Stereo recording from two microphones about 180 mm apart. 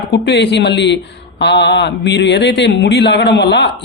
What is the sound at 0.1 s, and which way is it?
A man's voice, 70° left (ahead or behind).